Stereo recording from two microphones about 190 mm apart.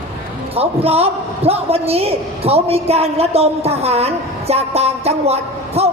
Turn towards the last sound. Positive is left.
turn(degrees=-35)  # may be behind; listen again after turning